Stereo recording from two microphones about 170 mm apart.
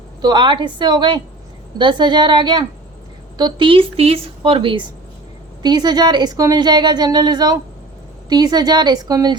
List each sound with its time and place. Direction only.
0.2 s a woman's voice: 25° right (ahead or behind)